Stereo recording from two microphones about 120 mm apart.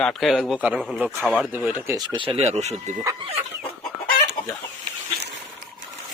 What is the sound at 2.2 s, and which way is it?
Speech, 55° right (ahead or behind).